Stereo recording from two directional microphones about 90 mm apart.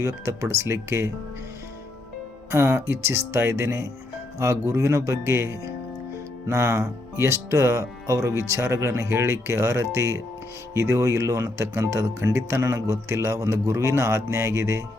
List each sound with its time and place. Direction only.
0.0 s speech: 35° right (ahead or behind)
2.5 s speech: 30° right (ahead or behind)